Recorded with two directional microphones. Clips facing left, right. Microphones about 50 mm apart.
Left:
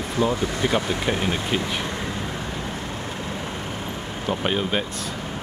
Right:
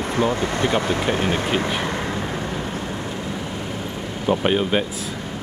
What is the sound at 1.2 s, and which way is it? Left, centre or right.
Speech, right.